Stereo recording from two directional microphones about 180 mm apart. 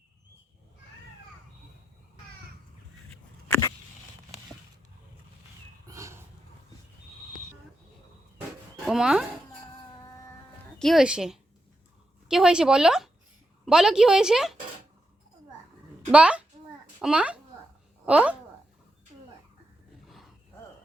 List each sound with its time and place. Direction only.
5.9 s a sound: 15° right (ahead or behind)
8.9 s speech: 5° right (ahead or behind)
10.8 s a woman's voice: centre (ahead or behind)
16.1 s a child's voice: 5° right (ahead or behind)